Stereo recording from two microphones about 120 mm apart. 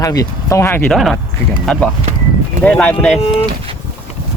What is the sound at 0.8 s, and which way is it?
Speech, centre (ahead or behind).